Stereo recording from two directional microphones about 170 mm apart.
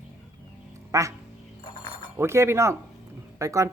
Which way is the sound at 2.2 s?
15° right (ahead or behind).